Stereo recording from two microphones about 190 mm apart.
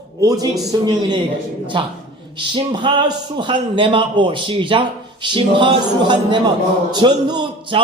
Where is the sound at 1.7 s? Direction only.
25° right (ahead or behind).